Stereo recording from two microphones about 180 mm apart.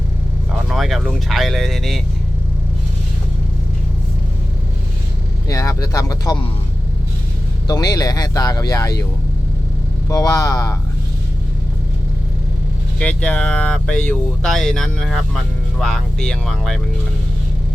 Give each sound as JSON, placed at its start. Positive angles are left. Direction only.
{"t": 0.7, "sound": "speech", "side_deg": 0}
{"t": 5.5, "sound": "speech", "side_deg": 20}
{"t": 7.7, "sound": "speech", "side_deg": 20}
{"t": 10.1, "sound": "speech", "side_deg": 20}
{"t": 13.0, "sound": "speech", "side_deg": 5}